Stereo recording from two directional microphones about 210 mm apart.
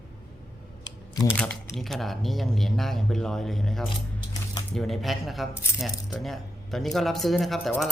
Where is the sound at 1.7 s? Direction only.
Centre (ahead or behind).